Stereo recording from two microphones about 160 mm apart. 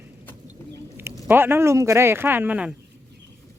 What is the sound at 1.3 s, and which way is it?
Speech, 15° right (ahead or behind).